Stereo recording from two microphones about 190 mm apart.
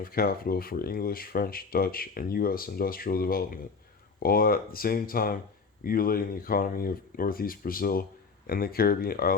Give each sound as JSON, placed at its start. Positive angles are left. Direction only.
{"t": 0.0, "sound": "speech", "side_deg": 50}